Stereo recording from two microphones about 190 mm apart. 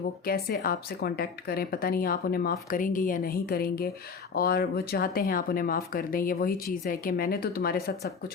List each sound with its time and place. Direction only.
0.3 s speech: 55° left (ahead or behind)